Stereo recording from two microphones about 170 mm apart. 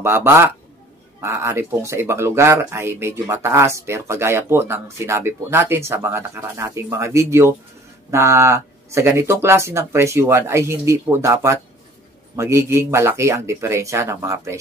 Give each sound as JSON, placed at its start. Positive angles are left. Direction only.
{"t": 0.0, "sound": "speech", "side_deg": -15}